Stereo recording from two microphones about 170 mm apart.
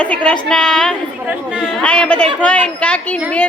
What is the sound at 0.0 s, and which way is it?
A woman's voice, 5° left (ahead or behind).